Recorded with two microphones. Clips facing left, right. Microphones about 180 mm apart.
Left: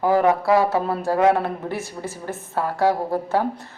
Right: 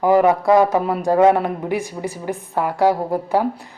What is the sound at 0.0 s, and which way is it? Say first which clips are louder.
Speech: right 3 dB; 15° right (ahead or behind).